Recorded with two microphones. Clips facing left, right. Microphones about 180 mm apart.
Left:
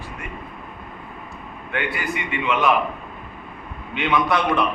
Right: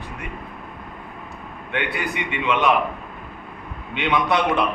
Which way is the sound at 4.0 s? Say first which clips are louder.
Even; 20° right (ahead or behind).